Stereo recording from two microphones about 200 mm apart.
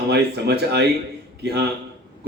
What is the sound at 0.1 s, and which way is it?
A man's voice, 55° right (ahead or behind).